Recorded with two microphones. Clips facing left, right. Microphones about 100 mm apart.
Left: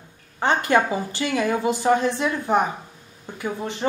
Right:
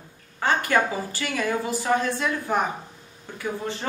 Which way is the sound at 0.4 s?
20° left (ahead or behind).